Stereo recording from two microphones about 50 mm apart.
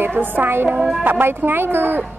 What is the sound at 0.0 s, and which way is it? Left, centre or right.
Speech, right.